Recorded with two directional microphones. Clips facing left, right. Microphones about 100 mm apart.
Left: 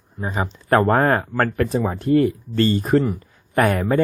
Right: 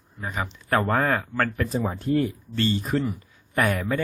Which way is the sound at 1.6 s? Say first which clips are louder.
Left 5 dB; 70° left (ahead or behind).